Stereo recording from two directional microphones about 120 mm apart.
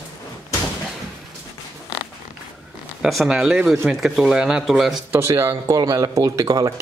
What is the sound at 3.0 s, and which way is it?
Speech, centre (ahead or behind).